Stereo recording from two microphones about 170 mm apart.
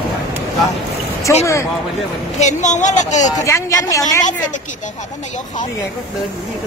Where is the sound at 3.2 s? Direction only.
20° left (ahead or behind).